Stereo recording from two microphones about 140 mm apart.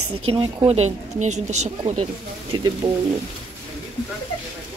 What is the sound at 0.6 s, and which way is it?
A woman's voice, 50° right (ahead or behind).